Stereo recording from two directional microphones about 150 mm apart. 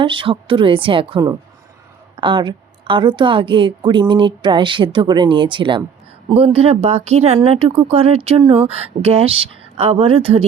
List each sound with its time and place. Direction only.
0.0 s speech: 35° right (ahead or behind)